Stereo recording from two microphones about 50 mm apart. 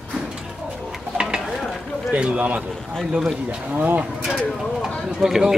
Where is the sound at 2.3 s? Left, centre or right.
Right.